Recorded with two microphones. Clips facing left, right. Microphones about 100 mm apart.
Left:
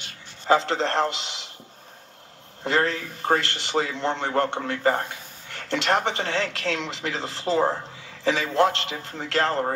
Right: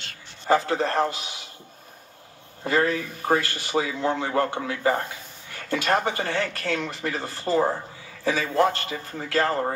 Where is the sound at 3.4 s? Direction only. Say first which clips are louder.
Left 1 dB; 70° left (ahead or behind).